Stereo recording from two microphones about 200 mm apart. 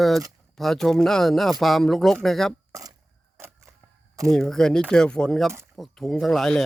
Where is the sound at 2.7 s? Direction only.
20° right (ahead or behind).